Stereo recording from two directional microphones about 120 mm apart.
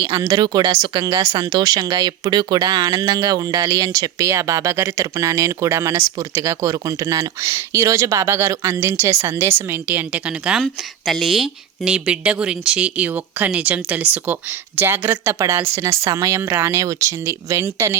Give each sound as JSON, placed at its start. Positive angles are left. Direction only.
{"t": 0.0, "sound": "speech", "side_deg": -30}
{"t": 10.6, "sound": "speech", "side_deg": 5}